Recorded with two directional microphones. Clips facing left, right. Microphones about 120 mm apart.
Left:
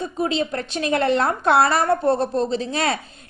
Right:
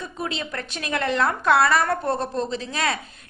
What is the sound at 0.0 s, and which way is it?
A woman's voice, 30° left (ahead or behind).